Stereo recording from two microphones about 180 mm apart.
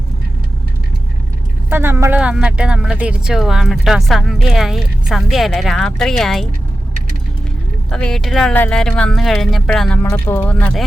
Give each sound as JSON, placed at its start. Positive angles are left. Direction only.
{"t": 1.7, "sound": "speech", "side_deg": -15}
{"t": 7.9, "sound": "speech", "side_deg": 5}